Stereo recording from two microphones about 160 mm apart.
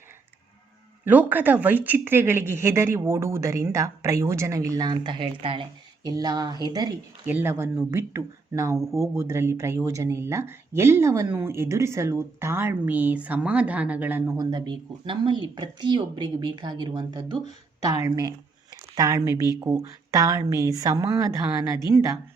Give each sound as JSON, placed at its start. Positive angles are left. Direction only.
{"t": 1.0, "sound": "speech", "side_deg": -10}
{"t": 7.3, "sound": "speech", "side_deg": -15}
{"t": 14.3, "sound": "speech", "side_deg": -25}